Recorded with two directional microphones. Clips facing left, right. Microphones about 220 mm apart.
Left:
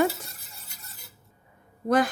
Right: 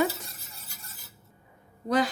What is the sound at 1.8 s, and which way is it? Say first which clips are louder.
Speech: left 3 dB; 50° left (ahead or behind).